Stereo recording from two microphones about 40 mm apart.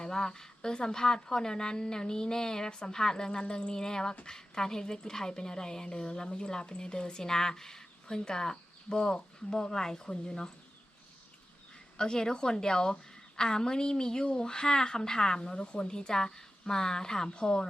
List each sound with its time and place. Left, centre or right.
0.0 s a woman's voice: centre
11.9 s a woman's voice: centre